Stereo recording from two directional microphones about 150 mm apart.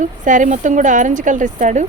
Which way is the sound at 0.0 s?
60° right (ahead or behind).